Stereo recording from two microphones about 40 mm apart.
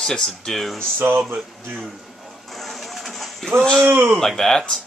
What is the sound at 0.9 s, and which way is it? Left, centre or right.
Speech, right.